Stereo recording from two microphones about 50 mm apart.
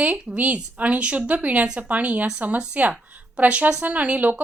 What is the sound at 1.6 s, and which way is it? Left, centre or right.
Speech, centre.